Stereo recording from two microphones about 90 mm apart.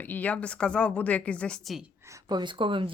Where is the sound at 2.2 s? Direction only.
55° right (ahead or behind); by 2.9 s 70° right (ahead or behind).